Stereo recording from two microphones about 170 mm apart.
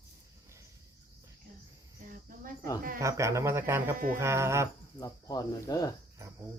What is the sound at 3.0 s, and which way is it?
Speech, 15° right (ahead or behind).